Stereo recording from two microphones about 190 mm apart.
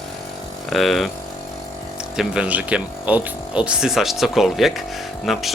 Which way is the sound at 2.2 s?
5° right (ahead or behind).